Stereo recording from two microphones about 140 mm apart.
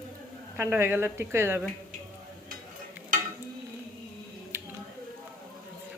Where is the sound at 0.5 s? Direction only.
15° right (ahead or behind).